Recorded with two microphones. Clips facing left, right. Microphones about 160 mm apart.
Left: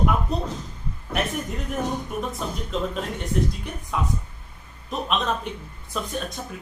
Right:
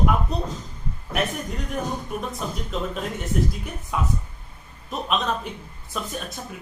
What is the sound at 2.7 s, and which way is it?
A man's voice, centre (ahead or behind).